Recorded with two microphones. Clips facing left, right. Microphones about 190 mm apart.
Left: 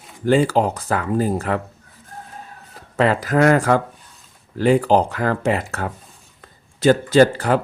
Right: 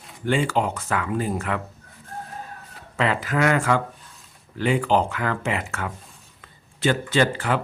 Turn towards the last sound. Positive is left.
turn(degrees=40)  # may be behind; listen again after turning